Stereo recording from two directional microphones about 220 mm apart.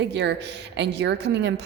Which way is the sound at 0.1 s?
50° right (ahead or behind).